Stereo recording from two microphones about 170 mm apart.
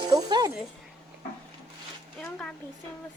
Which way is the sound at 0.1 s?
25° right (ahead or behind).